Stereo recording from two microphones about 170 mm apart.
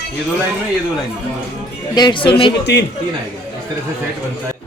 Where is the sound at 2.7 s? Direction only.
90° left.